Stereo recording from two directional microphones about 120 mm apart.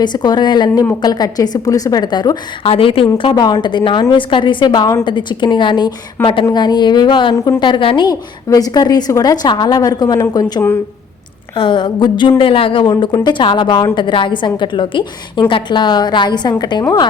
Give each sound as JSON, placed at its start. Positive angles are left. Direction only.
{"t": 0.0, "sound": "a woman's voice", "side_deg": 35}
{"t": 2.6, "sound": "a woman's voice", "side_deg": 50}
{"t": 7.3, "sound": "a woman's voice", "side_deg": 25}
{"t": 7.6, "sound": "a woman's voice", "side_deg": 45}
{"t": 11.5, "sound": "a woman's voice", "side_deg": 45}